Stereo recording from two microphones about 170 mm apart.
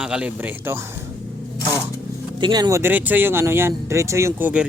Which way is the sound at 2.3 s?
25° right (ahead or behind).